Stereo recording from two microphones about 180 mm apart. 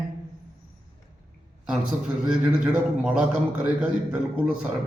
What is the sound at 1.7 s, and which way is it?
A man's voice, 5° right (ahead or behind).